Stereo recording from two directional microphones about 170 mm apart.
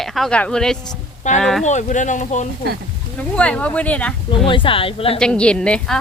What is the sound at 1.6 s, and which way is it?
Speech, 45° left (ahead or behind).